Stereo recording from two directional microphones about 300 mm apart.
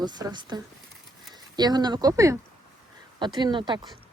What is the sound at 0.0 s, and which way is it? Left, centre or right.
A woman's voice, centre.